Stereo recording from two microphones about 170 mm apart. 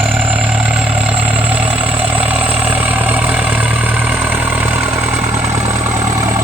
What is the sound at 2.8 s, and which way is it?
Vehicle, 10° right (ahead or behind).